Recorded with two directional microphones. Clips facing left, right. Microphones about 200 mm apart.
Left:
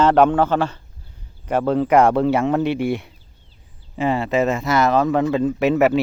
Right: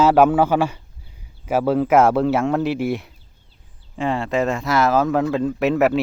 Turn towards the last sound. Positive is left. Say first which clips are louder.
# left 1 dB
turn(degrees=0)  # may be behind; listen again after turning